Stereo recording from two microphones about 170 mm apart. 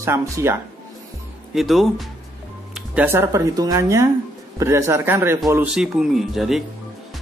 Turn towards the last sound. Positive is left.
turn(degrees=0)  # may be behind; listen again after turning